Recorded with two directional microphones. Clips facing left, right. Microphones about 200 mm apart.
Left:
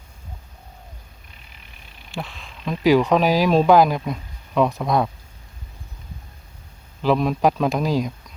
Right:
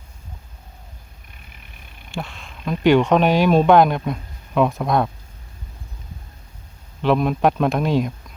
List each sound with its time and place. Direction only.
1.5 s a sound: 55° right (ahead or behind)
2.0 s speech: centre (ahead or behind)
7.0 s speech: centre (ahead or behind)